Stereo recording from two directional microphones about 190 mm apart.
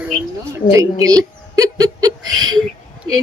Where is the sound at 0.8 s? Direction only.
20° right (ahead or behind).